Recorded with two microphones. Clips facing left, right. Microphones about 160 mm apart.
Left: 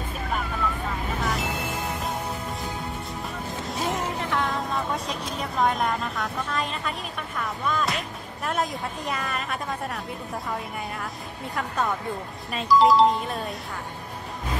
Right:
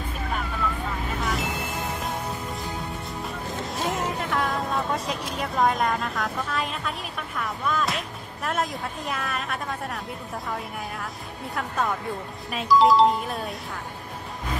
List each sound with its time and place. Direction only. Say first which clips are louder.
1.2 s music: even; centre (ahead or behind)
3.7 s vehicle: even; centre (ahead or behind)
8.5 s a woman's voice: even; centre (ahead or behind)
11.5 s a woman's voice: even; centre (ahead or behind)